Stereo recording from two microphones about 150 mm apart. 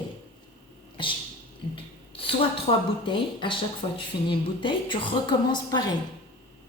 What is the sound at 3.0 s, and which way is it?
A woman's voice, 35° left (ahead or behind).